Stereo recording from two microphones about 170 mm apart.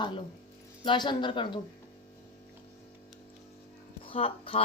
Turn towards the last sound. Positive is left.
turn(degrees=35)  # may be behind; listen again after turning